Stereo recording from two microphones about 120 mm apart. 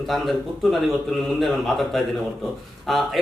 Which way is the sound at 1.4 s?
Centre (ahead or behind).